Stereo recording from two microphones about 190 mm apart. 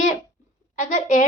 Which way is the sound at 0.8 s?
40° left (ahead or behind).